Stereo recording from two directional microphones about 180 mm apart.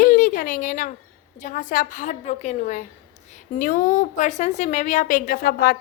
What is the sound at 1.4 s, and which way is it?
A woman's voice, 45° left (ahead or behind).